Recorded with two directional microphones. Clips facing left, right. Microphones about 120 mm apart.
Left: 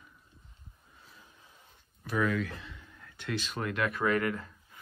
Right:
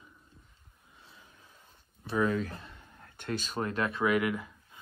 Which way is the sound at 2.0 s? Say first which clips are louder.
Right 1 dB; 30° right (ahead or behind).